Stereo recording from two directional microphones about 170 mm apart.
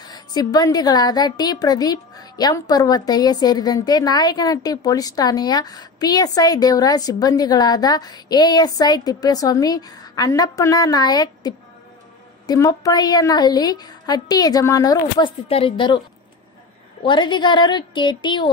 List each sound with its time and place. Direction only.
0.0 s a woman's voice: 25° left (ahead or behind)
17.0 s a woman's voice: 25° left (ahead or behind)